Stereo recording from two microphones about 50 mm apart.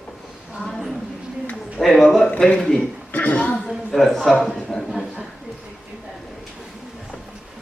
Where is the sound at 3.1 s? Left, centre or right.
Left.